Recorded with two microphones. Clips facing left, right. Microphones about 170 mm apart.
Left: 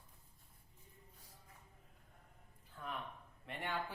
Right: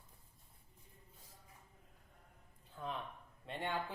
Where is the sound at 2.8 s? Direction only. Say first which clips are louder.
Right 4 dB; 20° right (ahead or behind).